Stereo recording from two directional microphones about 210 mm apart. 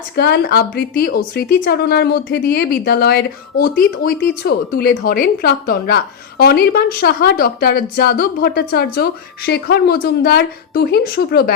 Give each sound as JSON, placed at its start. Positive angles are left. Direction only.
{"t": 0.2, "sound": "a woman's voice", "side_deg": 50}